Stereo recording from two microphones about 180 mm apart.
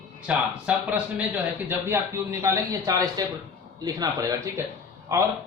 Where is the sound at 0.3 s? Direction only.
5° right (ahead or behind).